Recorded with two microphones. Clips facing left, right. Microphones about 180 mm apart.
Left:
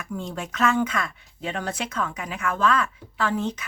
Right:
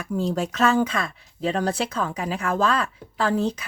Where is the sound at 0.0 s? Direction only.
35° right (ahead or behind).